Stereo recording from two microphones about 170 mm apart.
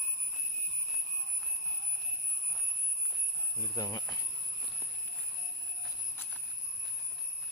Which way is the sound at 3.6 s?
20° left (ahead or behind).